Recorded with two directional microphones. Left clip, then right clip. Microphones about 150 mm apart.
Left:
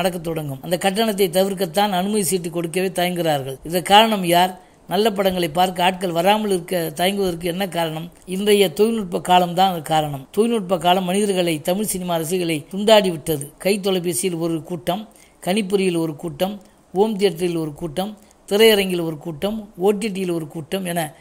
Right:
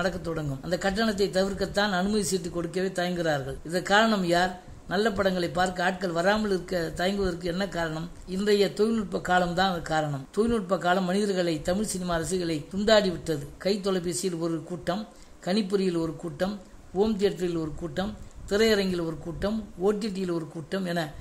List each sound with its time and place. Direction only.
0.0 s a man's voice: 20° left (ahead or behind)